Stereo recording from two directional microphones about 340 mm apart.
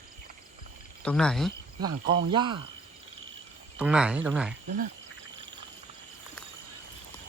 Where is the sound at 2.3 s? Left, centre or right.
Centre.